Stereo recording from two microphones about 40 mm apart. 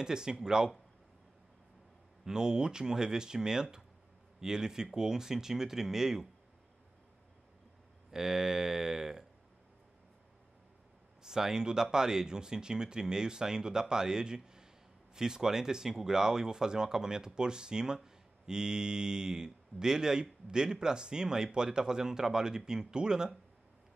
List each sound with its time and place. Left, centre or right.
0.0 s speech: centre
2.2 s speech: centre
8.1 s speech: centre
11.2 s speech: centre